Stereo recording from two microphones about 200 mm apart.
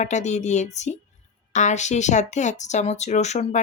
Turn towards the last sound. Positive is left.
turn(degrees=35)  # may be behind; listen again after turning